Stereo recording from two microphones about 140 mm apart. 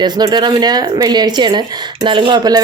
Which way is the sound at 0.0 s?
30° right (ahead or behind).